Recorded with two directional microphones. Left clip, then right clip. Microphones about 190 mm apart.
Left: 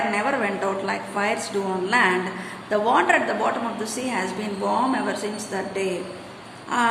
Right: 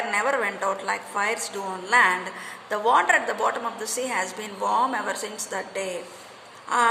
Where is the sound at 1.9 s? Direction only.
35° right (ahead or behind).